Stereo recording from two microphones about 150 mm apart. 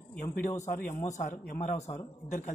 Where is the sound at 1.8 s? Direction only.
20° left (ahead or behind).